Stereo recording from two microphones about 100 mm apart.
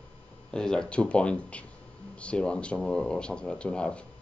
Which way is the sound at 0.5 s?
10° left (ahead or behind).